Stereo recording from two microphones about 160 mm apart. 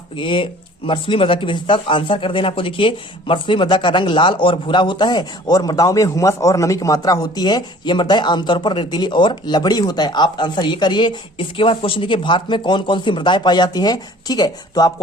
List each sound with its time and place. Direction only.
0.2 s speech: 30° left (ahead or behind)